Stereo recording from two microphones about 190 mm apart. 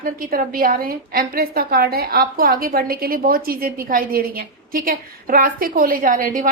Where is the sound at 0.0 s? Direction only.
50° right (ahead or behind).